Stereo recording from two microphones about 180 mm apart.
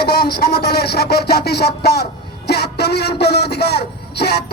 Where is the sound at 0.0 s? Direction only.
60° left (ahead or behind).